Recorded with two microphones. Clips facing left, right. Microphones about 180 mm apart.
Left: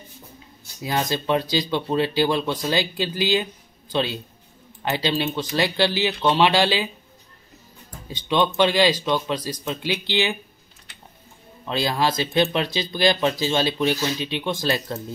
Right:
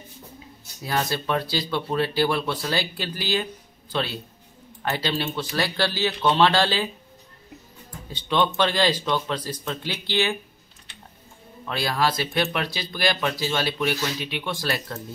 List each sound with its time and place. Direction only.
0.8 s speech: 20° left (ahead or behind)
8.1 s speech: 15° left (ahead or behind)
11.6 s speech: 20° left (ahead or behind)